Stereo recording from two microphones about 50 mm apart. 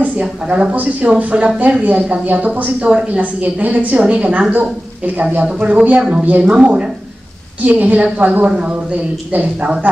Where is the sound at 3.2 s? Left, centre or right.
Right.